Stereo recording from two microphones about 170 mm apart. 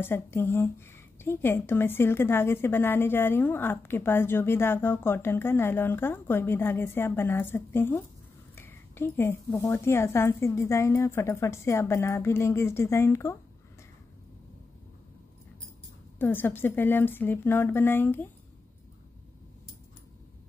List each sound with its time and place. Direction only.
0.0 s a woman's voice: 15° left (ahead or behind)
16.2 s a woman's voice: 10° left (ahead or behind)